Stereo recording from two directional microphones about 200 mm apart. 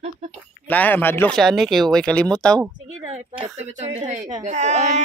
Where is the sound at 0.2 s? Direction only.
35° right (ahead or behind).